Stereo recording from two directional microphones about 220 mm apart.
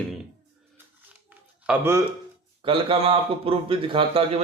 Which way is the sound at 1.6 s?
10° right (ahead or behind).